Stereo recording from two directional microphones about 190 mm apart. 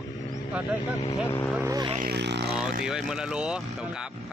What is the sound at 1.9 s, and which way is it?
Speech, 55° right (ahead or behind).